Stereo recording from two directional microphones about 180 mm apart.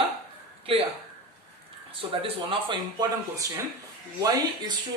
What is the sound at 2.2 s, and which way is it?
Speech, 30° right (ahead or behind).